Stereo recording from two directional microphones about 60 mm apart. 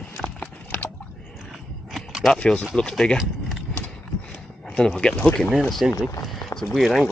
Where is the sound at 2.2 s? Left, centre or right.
Centre.